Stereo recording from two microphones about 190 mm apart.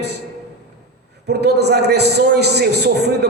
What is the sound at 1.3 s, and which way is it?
A man's voice, 60° right (ahead or behind).